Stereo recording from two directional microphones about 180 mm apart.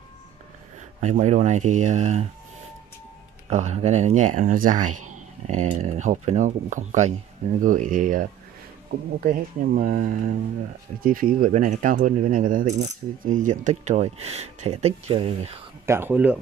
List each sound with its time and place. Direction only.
1.0 s speech: 40° right (ahead or behind)
3.4 s speech: 40° right (ahead or behind)
15.8 s speech: 15° right (ahead or behind)